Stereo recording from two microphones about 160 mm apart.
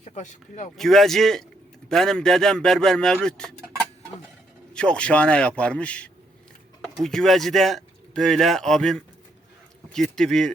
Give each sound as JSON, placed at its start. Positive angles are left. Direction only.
{"t": 0.0, "sound": "speech", "side_deg": 45}
{"t": 0.8, "sound": "speech", "side_deg": 0}
{"t": 4.7, "sound": "a man's voice", "side_deg": 5}